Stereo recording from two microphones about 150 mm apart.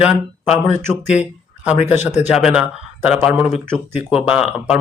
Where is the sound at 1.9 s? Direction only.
50° left (ahead or behind).